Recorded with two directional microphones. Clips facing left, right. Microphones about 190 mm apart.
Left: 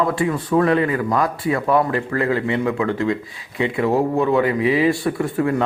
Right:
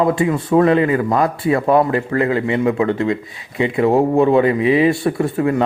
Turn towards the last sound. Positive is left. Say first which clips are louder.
# right 3 dB
turn(degrees=-20)  # may be behind; listen again after turning